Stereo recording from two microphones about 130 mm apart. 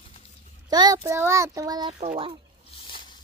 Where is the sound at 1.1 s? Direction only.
20° right (ahead or behind).